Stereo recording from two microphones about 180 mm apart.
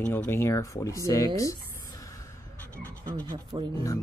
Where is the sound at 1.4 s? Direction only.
15° left (ahead or behind).